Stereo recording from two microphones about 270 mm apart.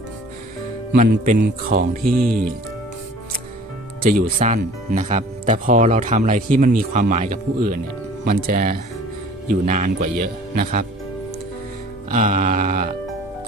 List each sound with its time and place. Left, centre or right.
0.9 s speech: right
4.0 s speech: right
12.1 s speech: right